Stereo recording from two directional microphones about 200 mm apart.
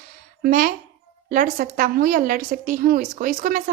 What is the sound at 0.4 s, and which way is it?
A woman's voice, 45° right (ahead or behind).